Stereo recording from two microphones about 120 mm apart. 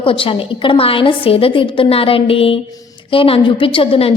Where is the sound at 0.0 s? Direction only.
50° left (ahead or behind).